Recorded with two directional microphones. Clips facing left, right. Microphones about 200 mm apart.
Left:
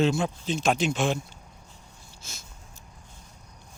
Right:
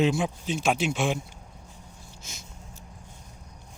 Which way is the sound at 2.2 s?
15° right (ahead or behind).